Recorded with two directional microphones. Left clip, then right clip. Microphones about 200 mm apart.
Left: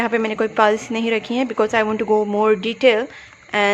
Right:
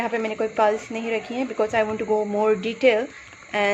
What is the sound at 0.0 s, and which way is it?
Speech, 30° left (ahead or behind).